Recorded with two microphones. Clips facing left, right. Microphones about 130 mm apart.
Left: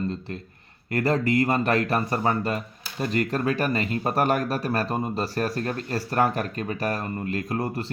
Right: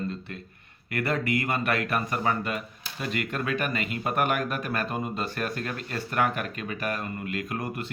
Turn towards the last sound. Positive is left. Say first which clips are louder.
# left 4 dB
turn(degrees=30)  # may be behind; listen again after turning